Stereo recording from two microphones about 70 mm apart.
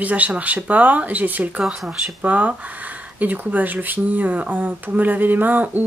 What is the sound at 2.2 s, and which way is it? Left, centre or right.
Speech, right.